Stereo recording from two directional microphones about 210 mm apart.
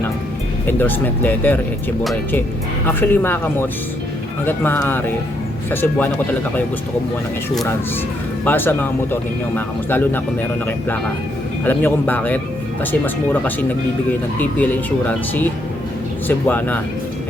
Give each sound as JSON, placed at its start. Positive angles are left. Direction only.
{"t": 0.7, "sound": "speech", "side_deg": 10}
{"t": 2.8, "sound": "speech", "side_deg": 10}
{"t": 8.4, "sound": "speech", "side_deg": 10}
{"t": 16.5, "sound": "speech", "side_deg": 10}